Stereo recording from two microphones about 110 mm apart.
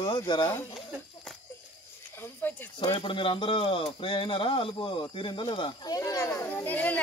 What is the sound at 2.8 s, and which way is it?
Speech, 50° left (ahead or behind).